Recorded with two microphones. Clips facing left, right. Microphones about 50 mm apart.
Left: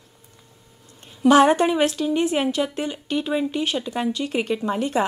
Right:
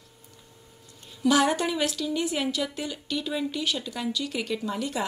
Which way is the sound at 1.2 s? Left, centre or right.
Left.